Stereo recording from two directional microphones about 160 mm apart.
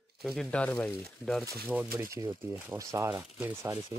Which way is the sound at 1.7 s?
15° right (ahead or behind).